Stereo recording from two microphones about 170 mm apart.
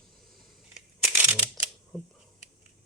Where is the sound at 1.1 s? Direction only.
10° right (ahead or behind).